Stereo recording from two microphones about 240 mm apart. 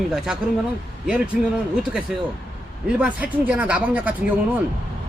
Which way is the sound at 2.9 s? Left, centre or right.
Centre.